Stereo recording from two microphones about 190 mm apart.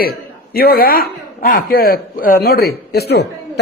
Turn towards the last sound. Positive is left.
turn(degrees=60)  # may be behind; listen again after turning